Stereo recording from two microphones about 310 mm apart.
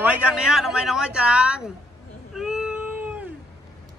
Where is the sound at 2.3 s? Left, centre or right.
Centre.